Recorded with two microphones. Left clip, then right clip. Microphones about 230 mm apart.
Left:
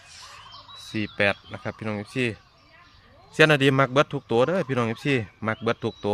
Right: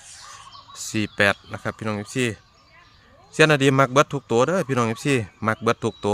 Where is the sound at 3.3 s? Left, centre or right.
Centre.